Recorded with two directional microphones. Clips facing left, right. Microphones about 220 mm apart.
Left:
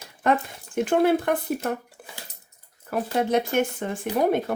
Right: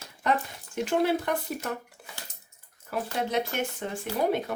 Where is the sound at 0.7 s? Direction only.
50° left (ahead or behind).